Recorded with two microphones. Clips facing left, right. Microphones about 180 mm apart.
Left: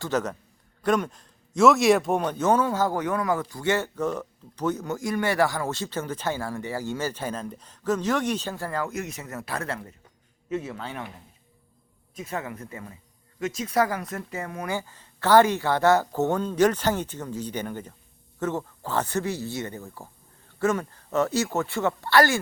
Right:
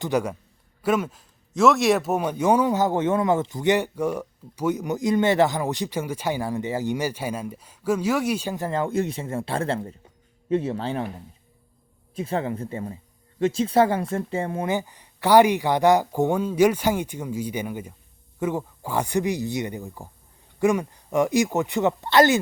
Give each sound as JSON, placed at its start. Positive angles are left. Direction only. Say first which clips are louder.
{"t": 0.0, "sound": "a man's voice", "louder": "right 3 dB", "side_deg": -10}
{"t": 12.1, "sound": "a man's voice", "louder": "right 7 dB", "side_deg": -30}